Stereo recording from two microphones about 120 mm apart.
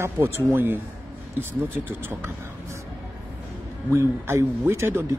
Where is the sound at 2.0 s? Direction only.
20° right (ahead or behind).